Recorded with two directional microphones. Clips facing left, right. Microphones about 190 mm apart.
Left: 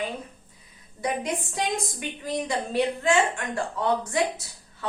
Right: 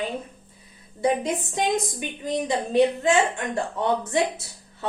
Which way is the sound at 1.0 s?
25° right (ahead or behind).